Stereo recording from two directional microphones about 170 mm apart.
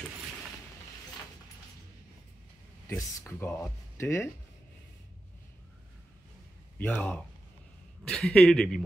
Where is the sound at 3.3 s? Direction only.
15° left (ahead or behind).